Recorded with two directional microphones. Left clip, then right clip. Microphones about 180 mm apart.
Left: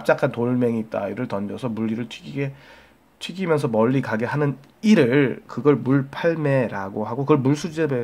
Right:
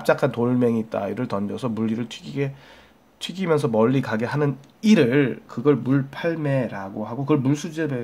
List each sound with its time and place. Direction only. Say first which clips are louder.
0.0 s speech: even; 5° right (ahead or behind); by 8.0 s 25° left (ahead or behind)